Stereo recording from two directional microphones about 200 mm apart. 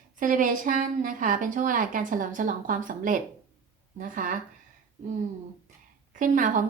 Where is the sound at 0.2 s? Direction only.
40° right (ahead or behind).